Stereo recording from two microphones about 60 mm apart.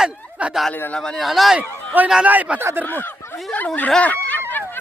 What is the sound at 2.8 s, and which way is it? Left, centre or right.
Speech, left.